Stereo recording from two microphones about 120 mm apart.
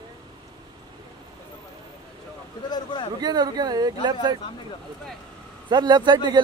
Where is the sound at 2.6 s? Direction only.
40° left (ahead or behind).